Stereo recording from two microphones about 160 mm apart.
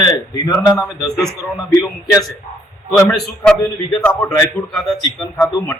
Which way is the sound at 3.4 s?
5° left (ahead or behind).